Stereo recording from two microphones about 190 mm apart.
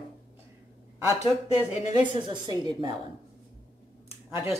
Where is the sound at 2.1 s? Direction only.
25° right (ahead or behind).